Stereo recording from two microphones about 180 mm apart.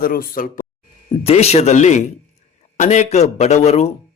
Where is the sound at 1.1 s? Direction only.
35° left (ahead or behind).